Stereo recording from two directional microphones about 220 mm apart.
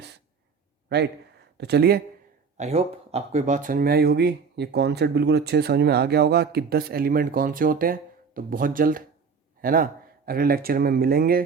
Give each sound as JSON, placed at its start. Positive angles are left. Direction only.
{"t": 0.9, "sound": "speech", "side_deg": -50}
{"t": 2.6, "sound": "speech", "side_deg": -30}